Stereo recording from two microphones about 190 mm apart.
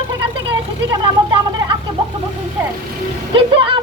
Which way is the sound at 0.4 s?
25° right (ahead or behind).